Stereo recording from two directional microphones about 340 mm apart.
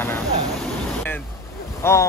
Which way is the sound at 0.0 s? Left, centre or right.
Centre.